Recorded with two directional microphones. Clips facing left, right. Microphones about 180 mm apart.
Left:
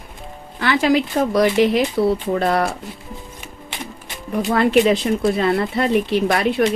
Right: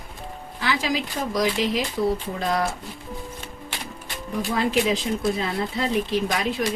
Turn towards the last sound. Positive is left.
turn(degrees=65)  # may be behind; listen again after turning